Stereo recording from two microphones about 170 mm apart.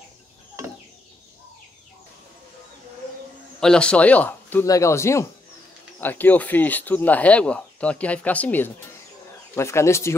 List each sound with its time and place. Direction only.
3.6 s speech: 5° left (ahead or behind)